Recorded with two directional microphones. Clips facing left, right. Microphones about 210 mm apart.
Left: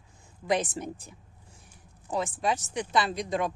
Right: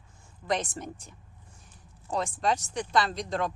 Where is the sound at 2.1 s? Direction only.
5° left (ahead or behind).